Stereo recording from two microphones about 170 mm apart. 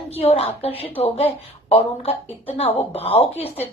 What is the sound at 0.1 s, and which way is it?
A woman's voice, 35° left (ahead or behind).